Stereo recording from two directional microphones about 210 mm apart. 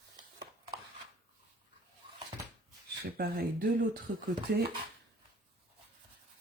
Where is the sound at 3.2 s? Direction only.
40° right (ahead or behind).